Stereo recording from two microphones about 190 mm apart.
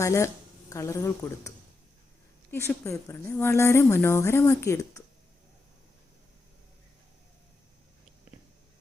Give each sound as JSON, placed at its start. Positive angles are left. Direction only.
{"t": 0.0, "sound": "speech", "side_deg": 15}